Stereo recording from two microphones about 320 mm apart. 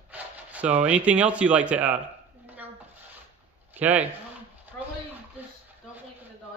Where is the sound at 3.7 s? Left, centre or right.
Centre.